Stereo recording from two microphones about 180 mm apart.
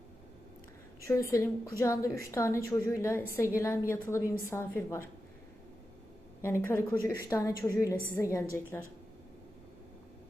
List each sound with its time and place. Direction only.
1.0 s a woman's voice: 15° left (ahead or behind)
6.4 s a woman's voice: 15° left (ahead or behind)